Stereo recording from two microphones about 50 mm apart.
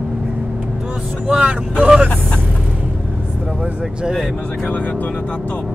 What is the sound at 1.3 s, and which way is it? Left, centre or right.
Vehicle, right.